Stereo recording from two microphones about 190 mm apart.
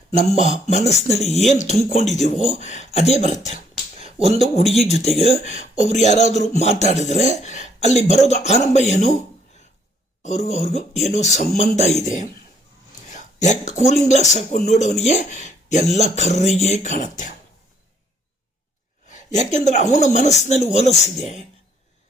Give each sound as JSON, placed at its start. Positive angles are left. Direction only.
{"t": 0.2, "sound": "speech", "side_deg": 35}
{"t": 10.2, "sound": "speech", "side_deg": 35}
{"t": 19.0, "sound": "a woman's voice", "side_deg": 40}